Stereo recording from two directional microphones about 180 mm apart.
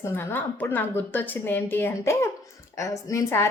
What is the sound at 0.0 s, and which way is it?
A woman's voice, 15° left (ahead or behind).